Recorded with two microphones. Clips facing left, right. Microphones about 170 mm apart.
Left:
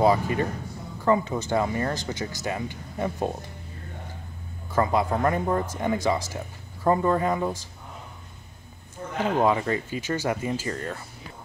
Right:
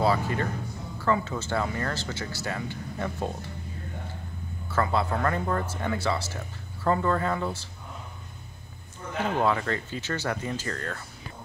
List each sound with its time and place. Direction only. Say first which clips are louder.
0.0 s speech: left 4 dB; 15° left (ahead or behind)
4.7 s speech: left 3 dB; 15° left (ahead or behind)
9.2 s speech: left 3 dB; 15° left (ahead or behind)